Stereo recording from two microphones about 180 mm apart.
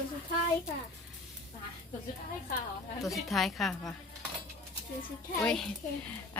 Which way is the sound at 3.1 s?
Centre (ahead or behind).